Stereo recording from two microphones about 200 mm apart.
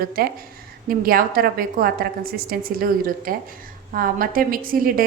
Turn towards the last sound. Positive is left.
turn(degrees=-45)  # may be behind; listen again after turning